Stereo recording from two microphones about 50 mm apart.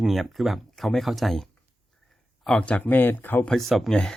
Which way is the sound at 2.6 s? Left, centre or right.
Left.